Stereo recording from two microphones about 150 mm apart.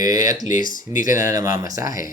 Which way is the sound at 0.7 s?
60° left (ahead or behind).